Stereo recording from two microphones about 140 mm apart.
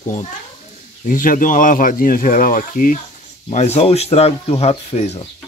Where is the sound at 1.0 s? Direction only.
75° left (ahead or behind).